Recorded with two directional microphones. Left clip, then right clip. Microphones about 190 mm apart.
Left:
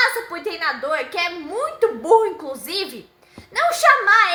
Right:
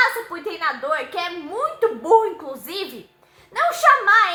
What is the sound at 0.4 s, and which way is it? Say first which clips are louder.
A woman's voice: even; 20° left (ahead or behind).